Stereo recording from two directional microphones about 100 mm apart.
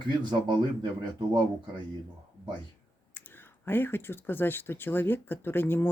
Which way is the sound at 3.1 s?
20° left (ahead or behind).